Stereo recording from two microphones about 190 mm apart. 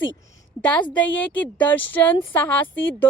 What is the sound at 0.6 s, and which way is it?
Speech, 5° left (ahead or behind).